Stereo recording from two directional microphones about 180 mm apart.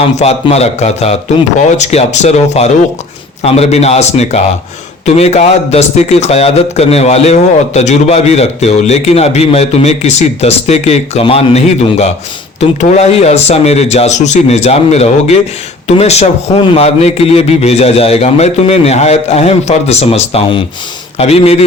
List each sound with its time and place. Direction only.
0.2 s a man's voice: 35° left (ahead or behind)